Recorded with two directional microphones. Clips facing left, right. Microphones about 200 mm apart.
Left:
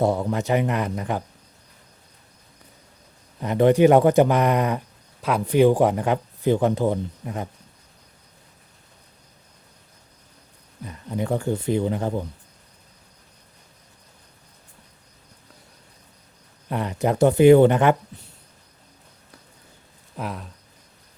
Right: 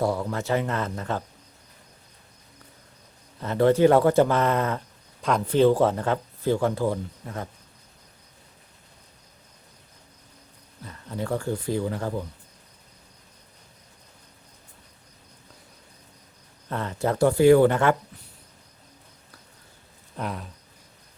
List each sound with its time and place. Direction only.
0.0 s speech: 20° left (ahead or behind)
3.4 s speech: 15° left (ahead or behind)
10.8 s speech: 15° left (ahead or behind)
16.6 s speech: 15° left (ahead or behind)
20.1 s speech: centre (ahead or behind)